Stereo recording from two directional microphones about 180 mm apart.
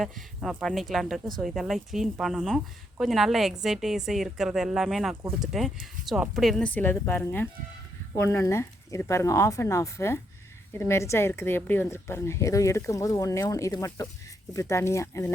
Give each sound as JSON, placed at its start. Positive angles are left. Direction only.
{"t": 0.0, "sound": "a woman's voice", "side_deg": 0}